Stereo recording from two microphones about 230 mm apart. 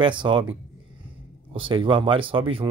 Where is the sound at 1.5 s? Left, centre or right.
Right.